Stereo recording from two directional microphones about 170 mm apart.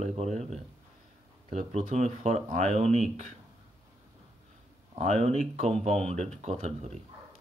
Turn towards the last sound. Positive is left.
turn(degrees=-40)  # may be behind; listen again after turning